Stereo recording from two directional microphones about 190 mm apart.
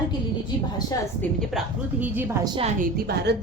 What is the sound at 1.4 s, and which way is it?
A woman's voice, 5° right (ahead or behind).